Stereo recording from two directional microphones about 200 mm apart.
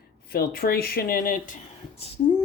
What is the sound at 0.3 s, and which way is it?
Speech, 50° left (ahead or behind).